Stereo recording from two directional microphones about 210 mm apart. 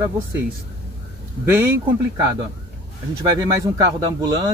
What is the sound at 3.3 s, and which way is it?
Speech, 15° right (ahead or behind).